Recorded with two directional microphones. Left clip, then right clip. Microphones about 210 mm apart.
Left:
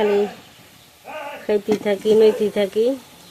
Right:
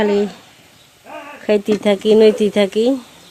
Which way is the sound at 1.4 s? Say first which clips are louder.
Right 5 dB; 30° right (ahead or behind).